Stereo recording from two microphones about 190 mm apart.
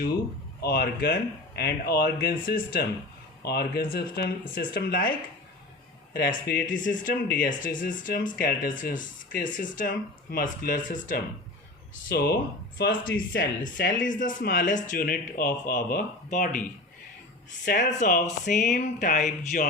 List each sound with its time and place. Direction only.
0.6 s speech: 55° left (ahead or behind)
6.1 s speech: 55° left (ahead or behind)
12.0 s speech: 55° left (ahead or behind)
17.7 s speech: 45° left (ahead or behind)